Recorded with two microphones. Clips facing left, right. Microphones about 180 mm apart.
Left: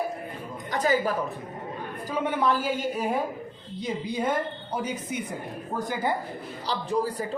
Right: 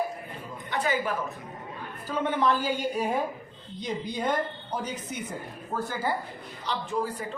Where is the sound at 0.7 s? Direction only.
40° left (ahead or behind).